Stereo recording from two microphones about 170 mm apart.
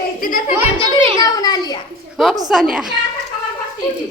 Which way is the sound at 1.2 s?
20° left (ahead or behind).